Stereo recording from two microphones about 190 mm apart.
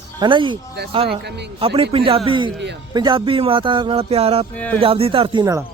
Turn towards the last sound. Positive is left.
turn(degrees=-25)  # may be behind; listen again after turning